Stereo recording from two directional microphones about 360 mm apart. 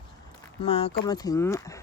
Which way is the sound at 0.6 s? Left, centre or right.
Centre.